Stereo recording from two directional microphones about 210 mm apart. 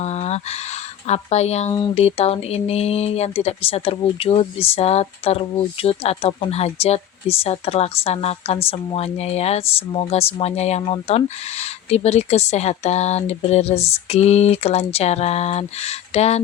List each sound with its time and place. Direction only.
0.0 s speech: 30° left (ahead or behind)